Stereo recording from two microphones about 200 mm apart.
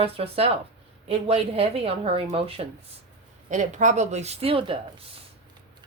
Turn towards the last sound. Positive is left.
turn(degrees=-30)  # may be behind; listen again after turning